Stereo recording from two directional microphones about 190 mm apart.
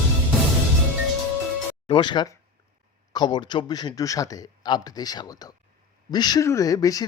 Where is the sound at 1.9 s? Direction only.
25° left (ahead or behind).